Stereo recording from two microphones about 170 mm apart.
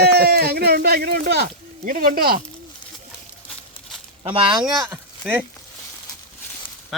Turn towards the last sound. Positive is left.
turn(degrees=0)  # may be behind; listen again after turning